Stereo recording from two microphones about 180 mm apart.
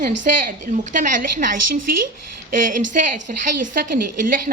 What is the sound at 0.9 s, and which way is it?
A woman's voice, 45° right (ahead or behind).